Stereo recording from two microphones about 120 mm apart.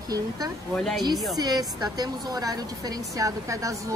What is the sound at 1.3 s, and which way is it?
A woman's voice, 30° right (ahead or behind).